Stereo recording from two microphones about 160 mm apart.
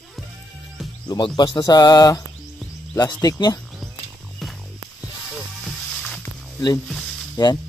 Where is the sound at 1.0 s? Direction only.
25° left (ahead or behind).